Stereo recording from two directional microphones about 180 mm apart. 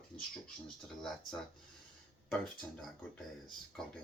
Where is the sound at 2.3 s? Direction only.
5° left (ahead or behind).